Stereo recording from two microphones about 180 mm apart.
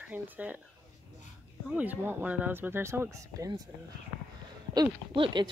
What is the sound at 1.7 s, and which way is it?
Speech, 10° right (ahead or behind).